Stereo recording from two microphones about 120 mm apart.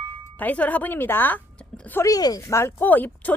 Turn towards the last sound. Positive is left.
turn(degrees=15)  # may be behind; listen again after turning